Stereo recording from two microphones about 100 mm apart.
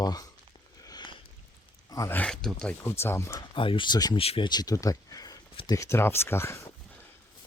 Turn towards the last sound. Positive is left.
turn(degrees=25)  # may be behind; listen again after turning